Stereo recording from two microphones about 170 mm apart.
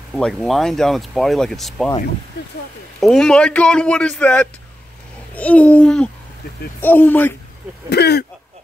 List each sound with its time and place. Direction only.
0.1 s speech: centre (ahead or behind)
3.0 s a child's voice: 5° left (ahead or behind)
7.9 s speech: 75° left (ahead or behind)